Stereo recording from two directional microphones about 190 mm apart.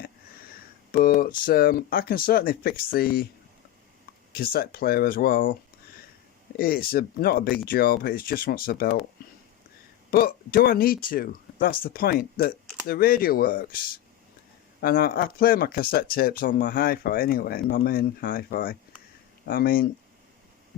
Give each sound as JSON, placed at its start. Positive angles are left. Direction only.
{"t": 0.9, "sound": "speech", "side_deg": 50}
{"t": 4.3, "sound": "speech", "side_deg": 55}
{"t": 6.6, "sound": "speech", "side_deg": 50}
{"t": 10.1, "sound": "speech", "side_deg": 50}